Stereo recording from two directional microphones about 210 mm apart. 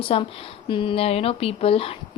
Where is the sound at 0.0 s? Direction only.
25° left (ahead or behind).